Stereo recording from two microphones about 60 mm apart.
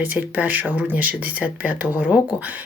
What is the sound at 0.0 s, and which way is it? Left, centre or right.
Speech, right.